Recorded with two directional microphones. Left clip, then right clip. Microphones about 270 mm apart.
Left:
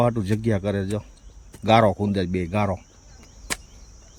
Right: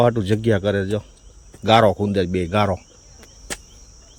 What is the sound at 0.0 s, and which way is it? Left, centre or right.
Speech, centre.